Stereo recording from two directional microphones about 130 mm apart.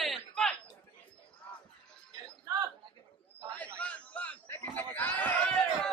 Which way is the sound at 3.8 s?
10° left (ahead or behind).